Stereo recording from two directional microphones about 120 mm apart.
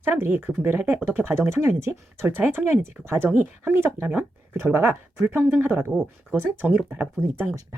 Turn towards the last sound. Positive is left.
turn(degrees=-20)  # may be behind; listen again after turning